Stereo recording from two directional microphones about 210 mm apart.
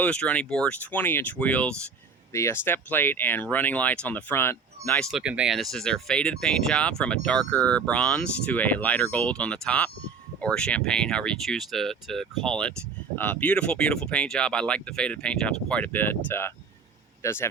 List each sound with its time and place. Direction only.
0.0 s speech: 5° left (ahead or behind)
5.1 s speech: 5° right (ahead or behind); by 17.5 s 10° left (ahead or behind)